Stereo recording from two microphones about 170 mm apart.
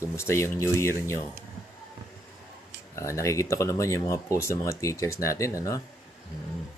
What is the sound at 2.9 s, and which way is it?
Speech, 15° left (ahead or behind).